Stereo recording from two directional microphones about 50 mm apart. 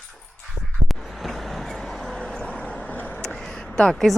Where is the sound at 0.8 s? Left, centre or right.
Centre.